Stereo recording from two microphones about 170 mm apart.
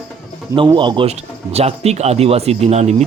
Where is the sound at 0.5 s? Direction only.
30° right (ahead or behind).